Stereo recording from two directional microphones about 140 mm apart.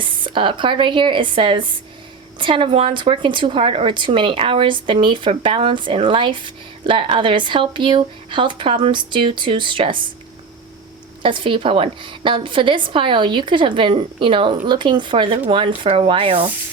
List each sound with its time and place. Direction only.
0.0 s a woman's voice: 35° right (ahead or behind)
11.2 s a woman's voice: 35° right (ahead or behind)